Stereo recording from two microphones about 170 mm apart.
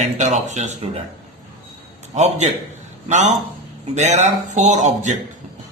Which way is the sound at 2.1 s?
40° right (ahead or behind).